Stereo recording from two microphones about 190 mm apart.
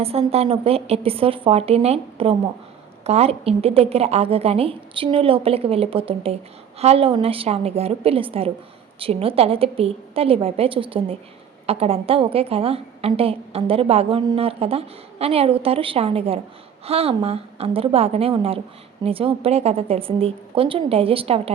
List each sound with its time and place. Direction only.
0.0 s a woman's voice: 30° right (ahead or behind)